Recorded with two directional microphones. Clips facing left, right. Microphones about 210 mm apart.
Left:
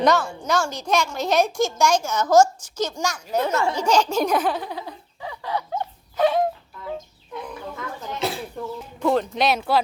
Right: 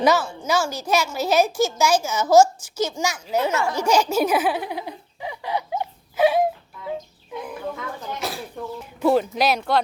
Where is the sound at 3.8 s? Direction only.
10° right (ahead or behind).